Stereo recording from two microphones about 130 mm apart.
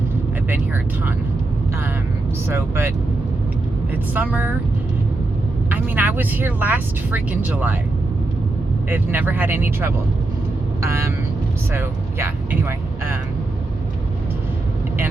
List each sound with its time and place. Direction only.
0.5 s speech: 15° right (ahead or behind)
2.5 s speech: 20° right (ahead or behind)
4.1 s speech: 10° right (ahead or behind)
5.7 s speech: 15° right (ahead or behind)
8.9 s speech: 15° right (ahead or behind)